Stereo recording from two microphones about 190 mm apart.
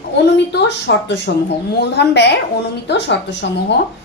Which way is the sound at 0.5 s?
65° left (ahead or behind).